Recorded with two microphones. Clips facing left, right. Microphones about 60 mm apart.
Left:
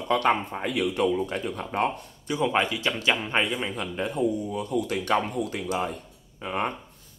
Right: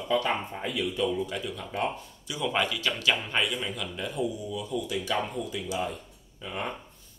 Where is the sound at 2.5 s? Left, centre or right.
Left.